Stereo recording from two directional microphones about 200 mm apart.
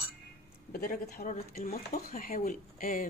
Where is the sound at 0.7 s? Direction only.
45° left (ahead or behind).